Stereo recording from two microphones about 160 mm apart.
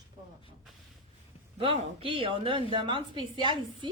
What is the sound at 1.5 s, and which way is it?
A woman's voice, 35° right (ahead or behind).